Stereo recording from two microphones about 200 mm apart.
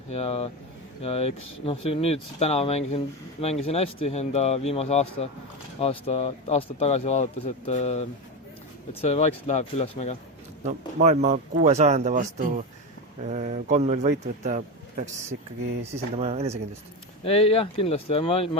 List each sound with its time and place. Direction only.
0.1 s speech: 30° left (ahead or behind)
11.0 s a man's voice: 35° right (ahead or behind)
16.1 s a man's voice: 30° right (ahead or behind)
17.2 s speech: 30° left (ahead or behind)